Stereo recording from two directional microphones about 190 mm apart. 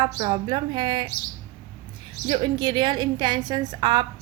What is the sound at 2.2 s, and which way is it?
A woman's voice, 25° right (ahead or behind).